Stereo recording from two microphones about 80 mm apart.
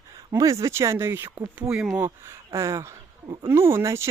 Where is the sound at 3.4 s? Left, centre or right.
Right.